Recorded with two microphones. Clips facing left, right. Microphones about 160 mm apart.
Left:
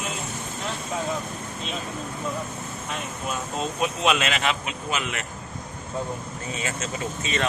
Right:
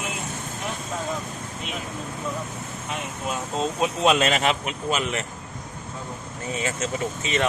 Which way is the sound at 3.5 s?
30° right (ahead or behind).